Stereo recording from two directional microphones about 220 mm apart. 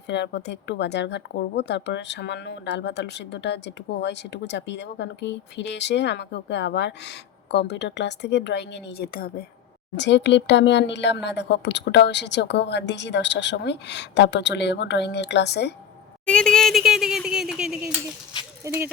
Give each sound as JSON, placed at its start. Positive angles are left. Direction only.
{"t": 0.1, "sound": "speech", "side_deg": 50}
{"t": 16.2, "sound": "a sound", "side_deg": 5}
{"t": 18.6, "sound": "speech", "side_deg": -10}